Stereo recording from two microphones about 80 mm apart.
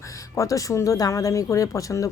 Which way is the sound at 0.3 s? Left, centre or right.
Left.